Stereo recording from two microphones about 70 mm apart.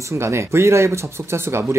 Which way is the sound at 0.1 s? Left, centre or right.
Right.